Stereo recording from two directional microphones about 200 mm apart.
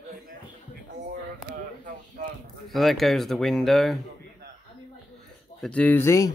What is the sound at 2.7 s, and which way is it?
Speech, centre (ahead or behind).